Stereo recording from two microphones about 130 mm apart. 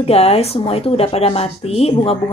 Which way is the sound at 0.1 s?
50° left (ahead or behind).